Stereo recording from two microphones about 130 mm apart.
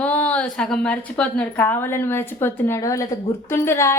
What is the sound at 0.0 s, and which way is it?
A woman's voice, 10° left (ahead or behind).